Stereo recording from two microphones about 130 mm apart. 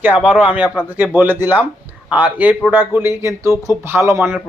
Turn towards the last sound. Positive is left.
turn(degrees=-20)  # may be behind; listen again after turning